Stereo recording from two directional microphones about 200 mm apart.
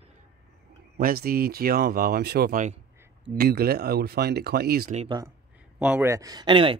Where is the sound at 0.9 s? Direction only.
50° right (ahead or behind).